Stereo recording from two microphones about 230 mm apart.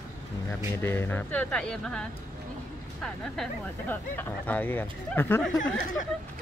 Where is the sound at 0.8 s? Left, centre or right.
Centre.